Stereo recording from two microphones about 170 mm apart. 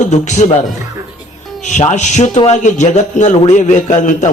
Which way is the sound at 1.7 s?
45° left (ahead or behind).